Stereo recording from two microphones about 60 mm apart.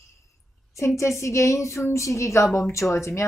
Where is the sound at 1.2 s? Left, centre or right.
Left.